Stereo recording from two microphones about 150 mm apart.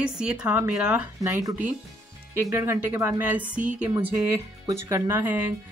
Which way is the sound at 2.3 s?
15° right (ahead or behind).